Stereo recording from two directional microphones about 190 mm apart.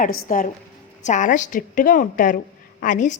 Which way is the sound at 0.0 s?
45° left (ahead or behind).